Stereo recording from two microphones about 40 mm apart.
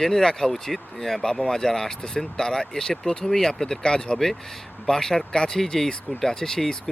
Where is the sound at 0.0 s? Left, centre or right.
Centre.